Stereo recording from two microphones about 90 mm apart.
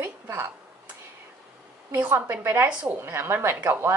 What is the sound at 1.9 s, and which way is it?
Speech, 25° right (ahead or behind).